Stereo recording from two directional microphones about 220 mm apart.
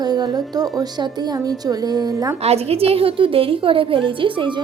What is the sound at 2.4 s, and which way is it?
A woman's voice, 25° right (ahead or behind).